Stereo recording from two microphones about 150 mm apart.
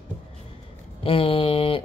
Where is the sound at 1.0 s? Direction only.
35° left (ahead or behind).